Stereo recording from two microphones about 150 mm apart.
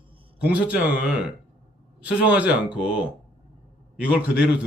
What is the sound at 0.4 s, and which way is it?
A man's voice, 10° right (ahead or behind).